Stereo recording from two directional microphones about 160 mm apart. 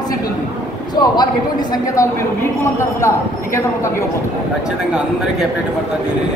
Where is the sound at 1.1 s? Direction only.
25° left (ahead or behind).